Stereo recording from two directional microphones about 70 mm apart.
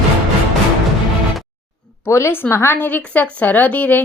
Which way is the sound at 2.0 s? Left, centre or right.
Left.